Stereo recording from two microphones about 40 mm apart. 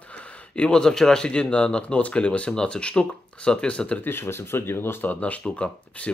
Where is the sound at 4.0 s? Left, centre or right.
Left.